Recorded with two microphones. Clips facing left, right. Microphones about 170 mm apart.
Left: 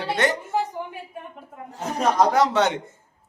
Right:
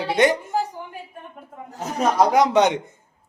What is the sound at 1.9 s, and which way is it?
Speech, 10° right (ahead or behind).